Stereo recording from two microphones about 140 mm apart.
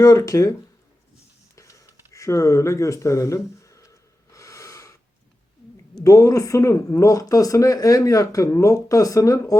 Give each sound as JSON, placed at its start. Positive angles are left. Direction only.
{"t": 0.0, "sound": "a man's voice", "side_deg": 25}
{"t": 1.5, "sound": "a sound", "side_deg": 20}
{"t": 6.0, "sound": "a man's voice", "side_deg": 25}